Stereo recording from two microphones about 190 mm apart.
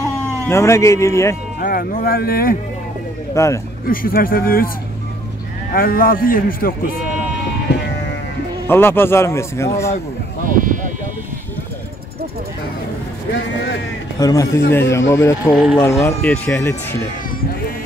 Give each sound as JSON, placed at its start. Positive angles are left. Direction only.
{"t": 0.5, "sound": "a man's voice", "side_deg": 15}
{"t": 1.6, "sound": "a man's voice", "side_deg": 50}
{"t": 3.3, "sound": "a man's voice", "side_deg": 15}
{"t": 3.8, "sound": "a man's voice", "side_deg": 50}
{"t": 5.7, "sound": "a man's voice", "side_deg": 50}
{"t": 8.6, "sound": "a man's voice", "side_deg": 10}
{"t": 10.5, "sound": "speech", "side_deg": -45}
{"t": 14.2, "sound": "a man's voice", "side_deg": 20}
{"t": 15.5, "sound": "speech", "side_deg": -5}
{"t": 15.8, "sound": "a man's voice", "side_deg": 15}